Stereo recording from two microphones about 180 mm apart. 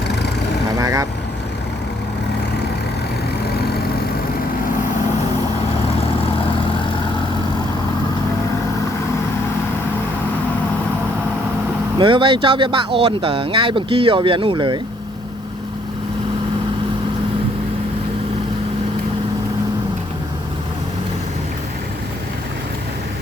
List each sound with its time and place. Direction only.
0.8 s vehicle: 20° right (ahead or behind)
11.9 s speech: 30° right (ahead or behind)